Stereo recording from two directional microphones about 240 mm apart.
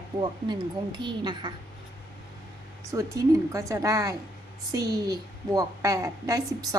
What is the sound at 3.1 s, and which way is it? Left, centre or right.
A woman's voice, centre.